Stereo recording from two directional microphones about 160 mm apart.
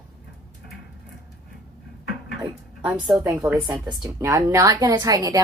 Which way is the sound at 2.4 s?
10° right (ahead or behind).